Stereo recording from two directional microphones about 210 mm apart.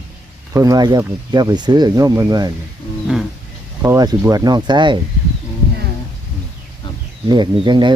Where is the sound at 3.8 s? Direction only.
15° right (ahead or behind).